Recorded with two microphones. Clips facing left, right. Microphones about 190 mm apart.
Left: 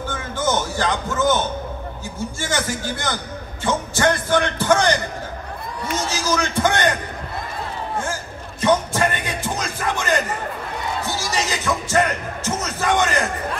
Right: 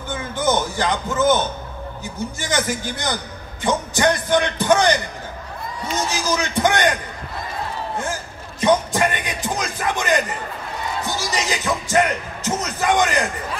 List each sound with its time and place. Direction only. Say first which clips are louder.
0.1 s music: right 3 dB; 15° right (ahead or behind)
2.4 s speech: right 1 dB; 20° right (ahead or behind)
6.0 s speech: left 1 dB; 15° right (ahead or behind)
8.1 s music: even; 20° right (ahead or behind)
11.1 s speech: right 2 dB; 15° right (ahead or behind)